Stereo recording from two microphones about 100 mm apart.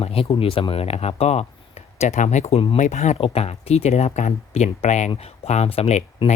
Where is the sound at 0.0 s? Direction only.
75° left (ahead or behind).